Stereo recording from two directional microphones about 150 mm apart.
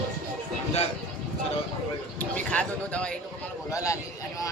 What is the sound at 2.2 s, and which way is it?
Speech, 10° left (ahead or behind).